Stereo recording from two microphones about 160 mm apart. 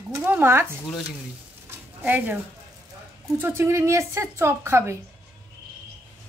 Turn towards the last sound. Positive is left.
turn(degrees=-15)  # may be behind; listen again after turning